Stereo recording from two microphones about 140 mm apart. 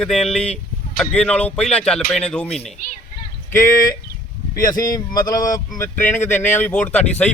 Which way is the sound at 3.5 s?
20° left (ahead or behind).